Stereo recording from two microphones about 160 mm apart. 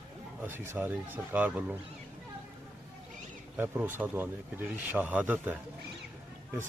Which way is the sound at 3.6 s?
10° right (ahead or behind).